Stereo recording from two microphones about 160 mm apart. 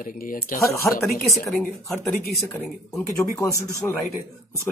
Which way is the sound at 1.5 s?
Centre (ahead or behind).